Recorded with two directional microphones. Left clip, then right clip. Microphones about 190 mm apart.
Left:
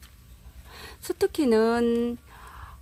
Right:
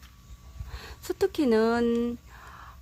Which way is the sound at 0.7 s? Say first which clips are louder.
Left 1 dB; 10° left (ahead or behind).